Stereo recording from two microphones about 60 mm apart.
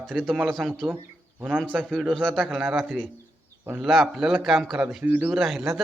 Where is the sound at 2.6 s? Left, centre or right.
Centre.